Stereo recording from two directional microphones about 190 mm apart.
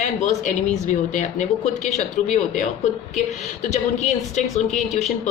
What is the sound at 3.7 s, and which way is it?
A woman's voice, 40° left (ahead or behind).